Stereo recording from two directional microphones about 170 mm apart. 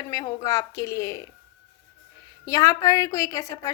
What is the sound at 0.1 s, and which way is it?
A woman's voice, 20° left (ahead or behind).